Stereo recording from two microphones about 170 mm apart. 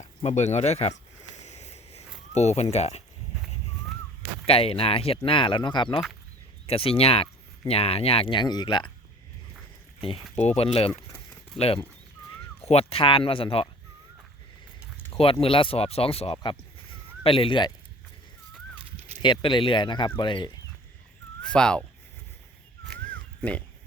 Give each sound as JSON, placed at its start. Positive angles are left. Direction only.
{"t": 0.2, "sound": "a sound", "side_deg": 40}
{"t": 4.4, "sound": "speech", "side_deg": 35}
{"t": 10.3, "sound": "speech", "side_deg": 40}
{"t": 15.1, "sound": "speech", "side_deg": 35}
{"t": 19.2, "sound": "speech", "side_deg": 30}
{"t": 21.4, "sound": "speech", "side_deg": 5}
{"t": 22.9, "sound": "crow", "side_deg": 10}